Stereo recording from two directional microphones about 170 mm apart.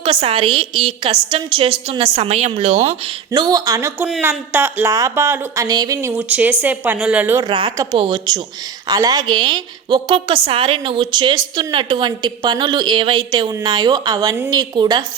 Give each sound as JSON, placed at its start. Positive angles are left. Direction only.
{"t": 0.0, "sound": "a woman's voice", "side_deg": -35}
{"t": 3.3, "sound": "a woman's voice", "side_deg": -25}
{"t": 7.4, "sound": "a woman's voice", "side_deg": -25}